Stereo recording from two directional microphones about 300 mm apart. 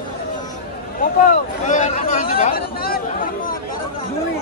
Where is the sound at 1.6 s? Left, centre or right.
Left.